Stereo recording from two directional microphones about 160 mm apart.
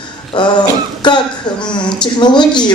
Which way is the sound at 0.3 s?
30° left (ahead or behind).